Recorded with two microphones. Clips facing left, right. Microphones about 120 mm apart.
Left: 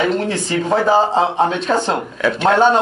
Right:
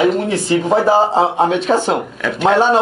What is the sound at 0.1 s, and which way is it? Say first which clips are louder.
Speech: right 3 dB; 5° right (ahead or behind).